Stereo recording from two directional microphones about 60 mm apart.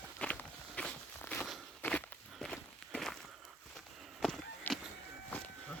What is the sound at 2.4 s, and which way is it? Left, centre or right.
Walk, centre.